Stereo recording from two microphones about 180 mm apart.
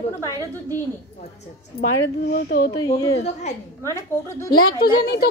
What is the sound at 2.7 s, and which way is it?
A woman's voice, 20° left (ahead or behind).